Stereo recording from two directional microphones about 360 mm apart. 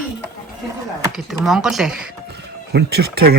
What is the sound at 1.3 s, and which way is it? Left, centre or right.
Speech, centre.